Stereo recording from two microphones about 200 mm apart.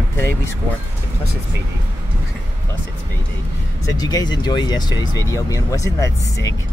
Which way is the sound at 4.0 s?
20° left (ahead or behind).